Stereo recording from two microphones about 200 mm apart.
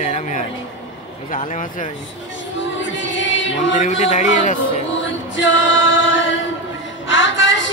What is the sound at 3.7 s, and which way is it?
Speech, 35° left (ahead or behind).